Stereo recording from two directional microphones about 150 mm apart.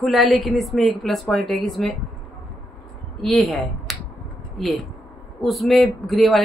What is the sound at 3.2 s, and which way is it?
Speech, centre (ahead or behind).